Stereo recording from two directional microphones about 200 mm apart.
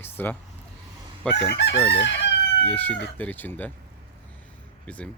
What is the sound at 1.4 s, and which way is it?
Chicken, 60° left (ahead or behind).